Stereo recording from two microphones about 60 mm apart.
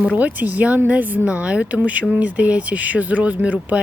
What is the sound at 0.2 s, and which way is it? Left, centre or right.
Speech, right.